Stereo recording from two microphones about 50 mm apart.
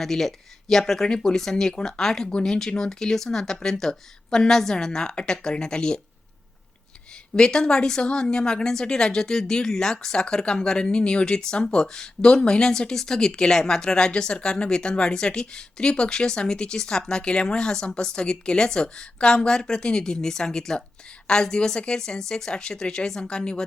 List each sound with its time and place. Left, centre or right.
0.0 s speech: centre
7.3 s speech: centre